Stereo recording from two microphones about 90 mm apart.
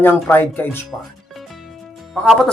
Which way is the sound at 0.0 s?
20° left (ahead or behind).